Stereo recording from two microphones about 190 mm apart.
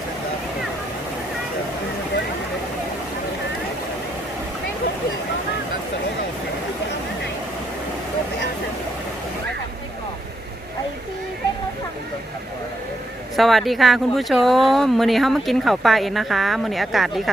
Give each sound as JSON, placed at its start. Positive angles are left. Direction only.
{"t": 13.3, "sound": "speech", "side_deg": 0}